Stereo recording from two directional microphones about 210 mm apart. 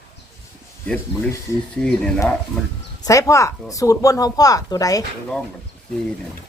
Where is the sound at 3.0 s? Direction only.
15° left (ahead or behind).